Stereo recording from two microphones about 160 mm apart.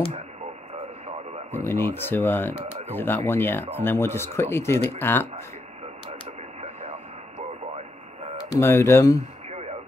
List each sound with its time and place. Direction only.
1.5 s speech: 15° left (ahead or behind)
8.5 s speech: 15° left (ahead or behind)